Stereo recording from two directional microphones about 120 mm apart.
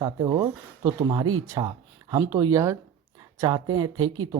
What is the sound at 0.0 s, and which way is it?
Speech, 30° right (ahead or behind).